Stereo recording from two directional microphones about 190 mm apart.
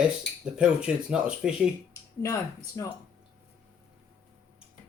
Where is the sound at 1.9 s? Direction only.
15° left (ahead or behind).